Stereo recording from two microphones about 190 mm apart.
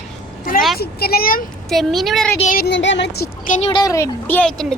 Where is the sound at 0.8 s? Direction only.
55° left (ahead or behind).